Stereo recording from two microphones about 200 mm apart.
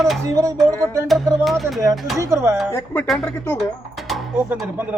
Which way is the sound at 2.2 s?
15° right (ahead or behind).